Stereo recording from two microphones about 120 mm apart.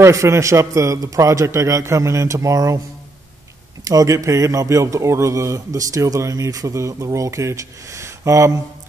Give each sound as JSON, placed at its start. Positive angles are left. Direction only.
{"t": 0.0, "sound": "a man's voice", "side_deg": -25}
{"t": 3.8, "sound": "a man's voice", "side_deg": -30}